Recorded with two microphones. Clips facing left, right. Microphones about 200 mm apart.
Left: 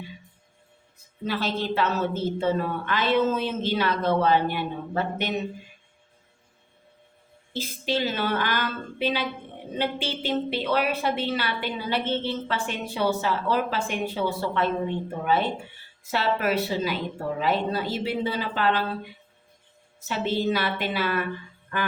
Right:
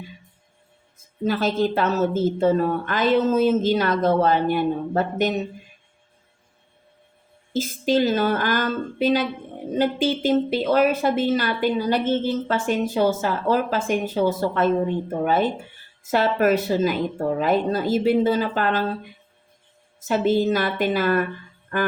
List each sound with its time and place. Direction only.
0.9 s a woman's voice: 45° right (ahead or behind)
7.5 s a woman's voice: 45° right (ahead or behind)
20.1 s a woman's voice: 45° right (ahead or behind)